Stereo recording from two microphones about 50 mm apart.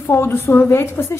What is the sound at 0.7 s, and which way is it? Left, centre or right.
Speech, left.